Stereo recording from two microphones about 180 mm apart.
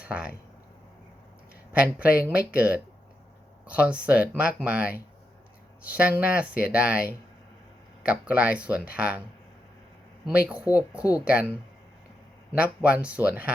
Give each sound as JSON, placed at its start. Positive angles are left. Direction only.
{"t": 0.0, "sound": "speech", "side_deg": -5}
{"t": 1.7, "sound": "speech", "side_deg": -5}
{"t": 3.8, "sound": "speech", "side_deg": -5}
{"t": 8.0, "sound": "speech", "side_deg": -5}
{"t": 10.2, "sound": "speech", "side_deg": -5}
{"t": 12.5, "sound": "speech", "side_deg": -5}